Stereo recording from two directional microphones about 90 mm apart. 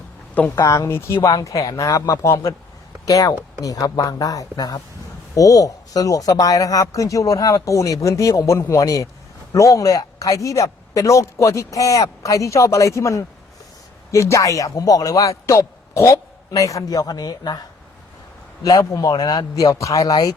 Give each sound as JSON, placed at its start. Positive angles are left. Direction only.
{"t": 0.5, "sound": "speech", "side_deg": 35}
{"t": 18.6, "sound": "speech", "side_deg": 40}